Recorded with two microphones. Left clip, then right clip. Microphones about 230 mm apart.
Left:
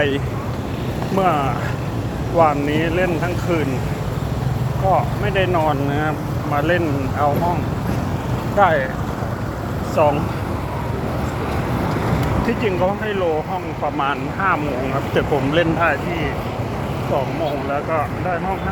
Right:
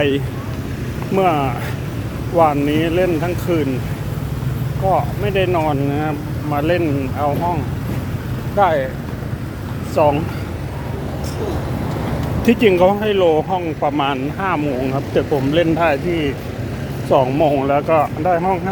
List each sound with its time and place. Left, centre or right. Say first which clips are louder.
1.1 s speech: right 2 dB; right
4.9 s speech: right 1 dB; right
8.5 s speech: even; right
9.9 s speech: right 2 dB; right
12.5 s speech: right 9 dB; right
14.0 s speech: even; right
17.1 s speech: right 8 dB; right